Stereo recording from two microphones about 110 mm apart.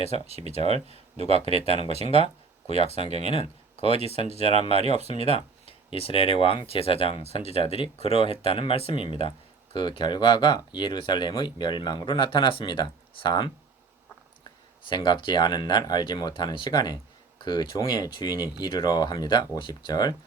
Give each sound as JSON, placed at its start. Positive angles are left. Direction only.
{"t": 0.3, "sound": "speech", "side_deg": -70}
{"t": 1.7, "sound": "speech", "side_deg": 65}
{"t": 4.7, "sound": "speech", "side_deg": -70}
{"t": 5.1, "sound": "speech", "side_deg": 55}
{"t": 9.7, "sound": "speech", "side_deg": 45}
{"t": 14.8, "sound": "speech", "side_deg": 45}